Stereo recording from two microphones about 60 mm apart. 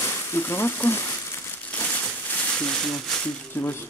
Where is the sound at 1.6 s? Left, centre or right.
Left.